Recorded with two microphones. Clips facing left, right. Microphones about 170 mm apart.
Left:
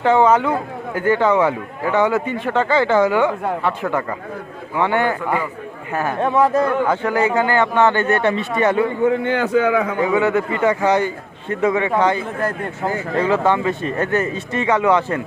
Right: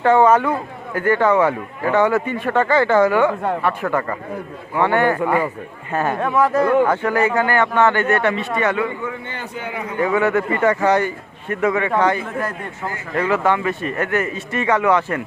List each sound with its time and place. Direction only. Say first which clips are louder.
0.0 s a man's voice: right 1 dB; 15° left (ahead or behind)
6.1 s a man's voice: left 2 dB; 25° left (ahead or behind)
9.0 s a man's voice: left 12 dB; 80° left
10.0 s a man's voice: right 4 dB; 15° left (ahead or behind)